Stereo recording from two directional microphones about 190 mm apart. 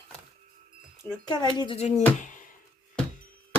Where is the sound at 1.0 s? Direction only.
20° left (ahead or behind).